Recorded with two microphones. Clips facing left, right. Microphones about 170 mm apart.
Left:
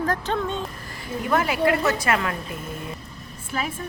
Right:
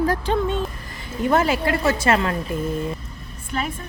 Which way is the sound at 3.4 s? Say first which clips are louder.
Right 2 dB; 5° left (ahead or behind).